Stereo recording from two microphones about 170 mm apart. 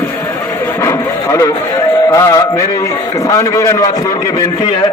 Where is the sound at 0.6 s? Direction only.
15° left (ahead or behind).